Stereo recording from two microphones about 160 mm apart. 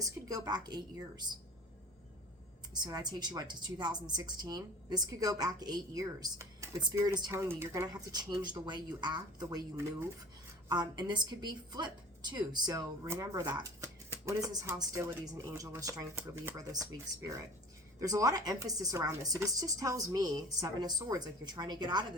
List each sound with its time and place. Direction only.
0.3 s a woman's voice: 25° right (ahead or behind)
2.7 s a woman's voice: 25° right (ahead or behind)